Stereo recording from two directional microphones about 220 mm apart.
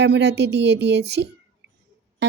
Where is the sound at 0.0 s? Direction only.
50° right (ahead or behind).